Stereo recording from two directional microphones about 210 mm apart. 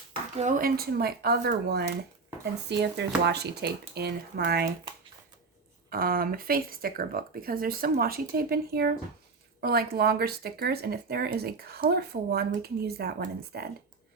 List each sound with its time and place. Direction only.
0.3 s speech: 40° right (ahead or behind)
5.9 s speech: 45° right (ahead or behind)